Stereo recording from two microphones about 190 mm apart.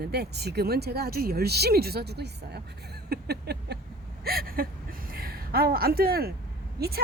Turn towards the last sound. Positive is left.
turn(degrees=-55)  # may be behind; listen again after turning